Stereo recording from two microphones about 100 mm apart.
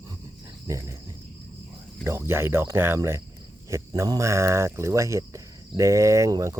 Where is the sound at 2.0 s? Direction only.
25° right (ahead or behind).